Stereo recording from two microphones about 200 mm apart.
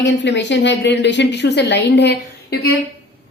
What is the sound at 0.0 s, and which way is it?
A woman's voice, 60° left (ahead or behind).